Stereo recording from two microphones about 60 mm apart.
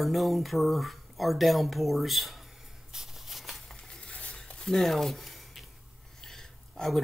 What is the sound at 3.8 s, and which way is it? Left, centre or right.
Stir, centre.